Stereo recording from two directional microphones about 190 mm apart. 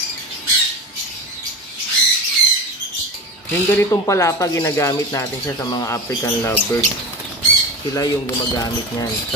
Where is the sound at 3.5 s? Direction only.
15° left (ahead or behind).